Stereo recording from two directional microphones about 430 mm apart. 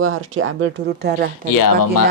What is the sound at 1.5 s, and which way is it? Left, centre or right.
Speech, left.